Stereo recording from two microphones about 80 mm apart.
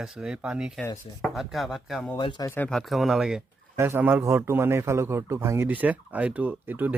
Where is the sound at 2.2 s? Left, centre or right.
Left.